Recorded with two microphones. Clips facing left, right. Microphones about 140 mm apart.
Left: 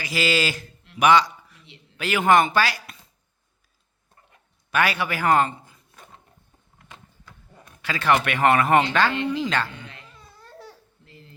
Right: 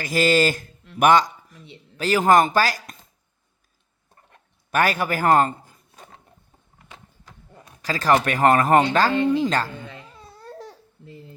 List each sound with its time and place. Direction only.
0.0 s speech: 45° right (ahead or behind)
4.7 s a man's voice: 45° right (ahead or behind)
7.8 s speech: 40° right (ahead or behind)
10.4 s babbling: 40° right (ahead or behind)